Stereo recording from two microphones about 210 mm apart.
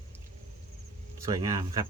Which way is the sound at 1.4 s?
15° right (ahead or behind).